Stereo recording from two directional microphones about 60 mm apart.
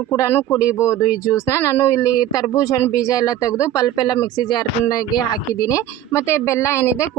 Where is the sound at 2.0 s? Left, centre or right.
Left.